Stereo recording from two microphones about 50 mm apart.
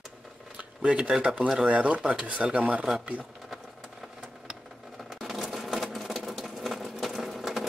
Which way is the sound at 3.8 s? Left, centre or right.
Centre.